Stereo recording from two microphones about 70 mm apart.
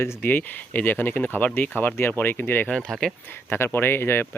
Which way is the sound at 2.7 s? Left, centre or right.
Centre.